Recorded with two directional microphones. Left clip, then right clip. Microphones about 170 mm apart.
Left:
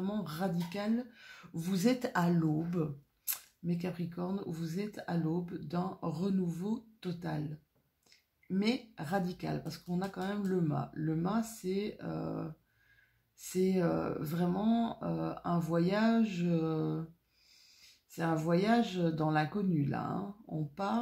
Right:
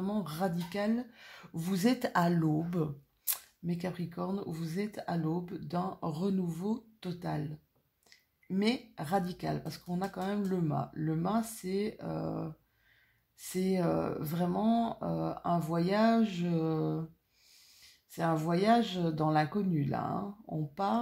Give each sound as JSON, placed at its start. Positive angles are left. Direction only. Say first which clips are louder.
{"t": 0.0, "sound": "speech", "louder": "right 3 dB", "side_deg": -35}
{"t": 8.5, "sound": "speech", "louder": "right 2 dB", "side_deg": -35}